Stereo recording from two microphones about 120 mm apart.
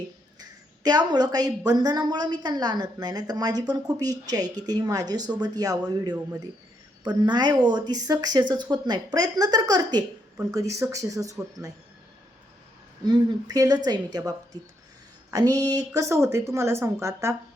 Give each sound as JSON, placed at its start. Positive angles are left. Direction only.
{"t": 0.3, "sound": "a woman's voice", "side_deg": -35}
{"t": 13.1, "sound": "a woman's voice", "side_deg": -30}